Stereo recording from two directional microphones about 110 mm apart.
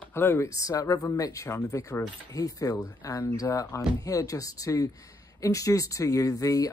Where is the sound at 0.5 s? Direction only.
30° left (ahead or behind).